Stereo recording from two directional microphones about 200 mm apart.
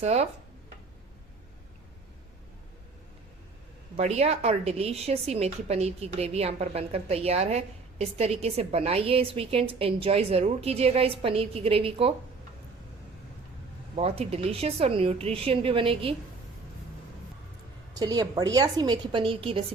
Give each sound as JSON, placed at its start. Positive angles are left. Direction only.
{"t": 0.0, "sound": "a woman's voice", "side_deg": -30}
{"t": 3.9, "sound": "a woman's voice", "side_deg": -30}
{"t": 13.9, "sound": "a woman's voice", "side_deg": -30}
{"t": 18.0, "sound": "a woman's voice", "side_deg": -20}